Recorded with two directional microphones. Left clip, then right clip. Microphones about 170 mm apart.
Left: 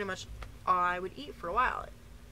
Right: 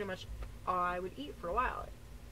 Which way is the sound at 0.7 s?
15° left (ahead or behind).